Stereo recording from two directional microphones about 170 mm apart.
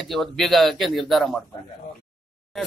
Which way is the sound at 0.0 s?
Centre (ahead or behind).